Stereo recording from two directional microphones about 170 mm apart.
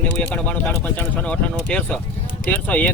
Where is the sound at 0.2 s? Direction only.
10° left (ahead or behind).